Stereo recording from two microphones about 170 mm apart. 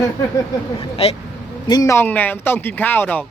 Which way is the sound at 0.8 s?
35° left (ahead or behind).